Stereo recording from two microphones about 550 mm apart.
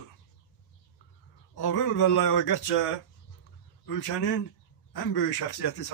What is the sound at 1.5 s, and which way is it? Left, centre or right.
A man's voice, left.